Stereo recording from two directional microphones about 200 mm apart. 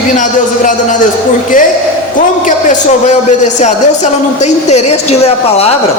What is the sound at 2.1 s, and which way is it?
A man's voice, 40° left (ahead or behind).